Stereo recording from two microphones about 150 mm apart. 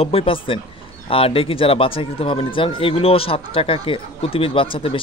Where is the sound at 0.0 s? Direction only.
40° left (ahead or behind).